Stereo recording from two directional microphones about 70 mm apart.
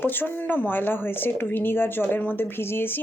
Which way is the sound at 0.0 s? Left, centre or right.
Left.